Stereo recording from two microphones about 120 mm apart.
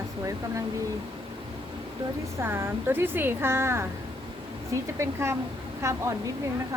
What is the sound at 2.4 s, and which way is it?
A woman's voice, 20° right (ahead or behind).